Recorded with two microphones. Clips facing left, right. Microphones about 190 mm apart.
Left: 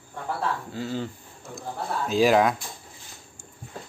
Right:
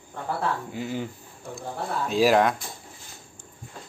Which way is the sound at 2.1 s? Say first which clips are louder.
Even; centre (ahead or behind).